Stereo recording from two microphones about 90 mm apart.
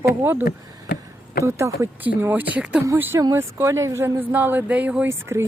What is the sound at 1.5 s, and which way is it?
Speech, 30° right (ahead or behind).